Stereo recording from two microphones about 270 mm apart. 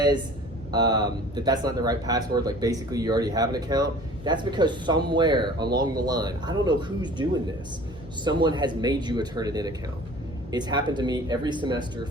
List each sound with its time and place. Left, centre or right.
0.7 s speech: centre